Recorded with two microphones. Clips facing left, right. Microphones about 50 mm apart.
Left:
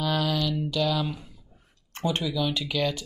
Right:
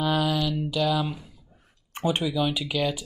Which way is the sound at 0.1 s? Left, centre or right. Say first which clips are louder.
Right 2 dB; centre.